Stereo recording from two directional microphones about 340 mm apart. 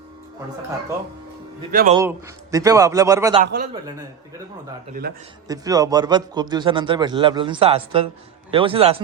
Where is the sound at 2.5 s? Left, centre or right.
Centre.